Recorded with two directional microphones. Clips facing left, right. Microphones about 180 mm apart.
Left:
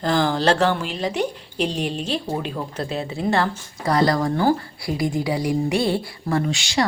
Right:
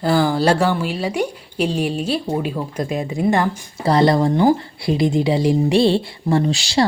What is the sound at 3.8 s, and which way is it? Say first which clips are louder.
Speech: right 4 dB; 25° right (ahead or behind).